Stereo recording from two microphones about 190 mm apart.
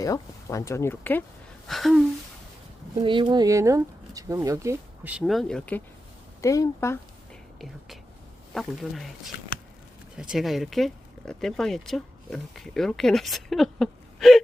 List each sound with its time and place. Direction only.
0.0 s speech: 15° left (ahead or behind)
1.6 s gasp: centre (ahead or behind)
3.0 s speech: 25° right (ahead or behind); by 5.8 s 5° left (ahead or behind)
6.4 s speech: 15° left (ahead or behind)
8.5 s speech: centre (ahead or behind)